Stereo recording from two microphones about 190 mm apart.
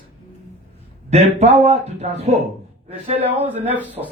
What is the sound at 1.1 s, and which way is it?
A man's voice, 35° right (ahead or behind).